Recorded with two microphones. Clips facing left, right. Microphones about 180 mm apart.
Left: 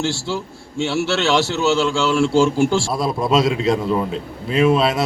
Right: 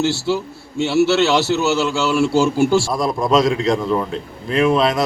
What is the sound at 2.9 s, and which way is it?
A man's voice, 5° left (ahead or behind).